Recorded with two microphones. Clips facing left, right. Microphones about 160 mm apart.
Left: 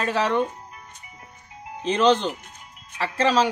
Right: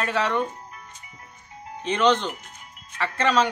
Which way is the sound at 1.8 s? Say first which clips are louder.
Left 2 dB; 30° left (ahead or behind).